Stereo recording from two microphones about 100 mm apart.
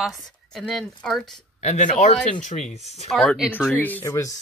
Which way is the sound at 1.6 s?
90° left.